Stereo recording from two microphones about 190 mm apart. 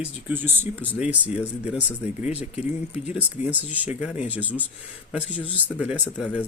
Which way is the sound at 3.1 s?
10° right (ahead or behind).